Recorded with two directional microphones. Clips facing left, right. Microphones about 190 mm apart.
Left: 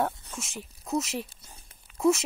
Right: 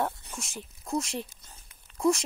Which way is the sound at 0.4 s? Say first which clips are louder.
Left 1 dB; centre (ahead or behind).